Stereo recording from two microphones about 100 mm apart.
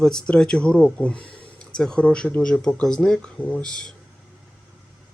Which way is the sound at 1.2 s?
60° left (ahead or behind).